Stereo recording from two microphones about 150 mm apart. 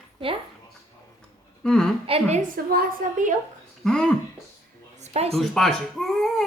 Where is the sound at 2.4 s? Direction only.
80° right.